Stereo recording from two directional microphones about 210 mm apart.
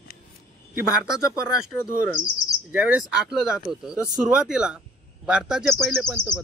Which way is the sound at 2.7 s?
5° right (ahead or behind).